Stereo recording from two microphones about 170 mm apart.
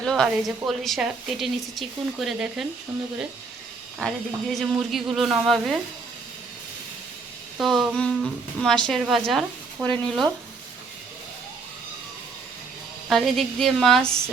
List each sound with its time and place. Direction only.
0.0 s a woman's voice: centre (ahead or behind)
4.0 s a woman's voice: centre (ahead or behind)
7.6 s a woman's voice: centre (ahead or behind)
9.8 s speech: 25° right (ahead or behind)
13.1 s a woman's voice: centre (ahead or behind)